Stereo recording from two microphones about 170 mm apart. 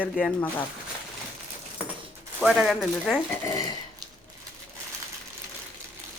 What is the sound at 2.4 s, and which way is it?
Speech, centre (ahead or behind).